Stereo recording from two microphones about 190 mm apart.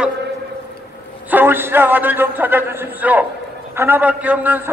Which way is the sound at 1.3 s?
10° right (ahead or behind).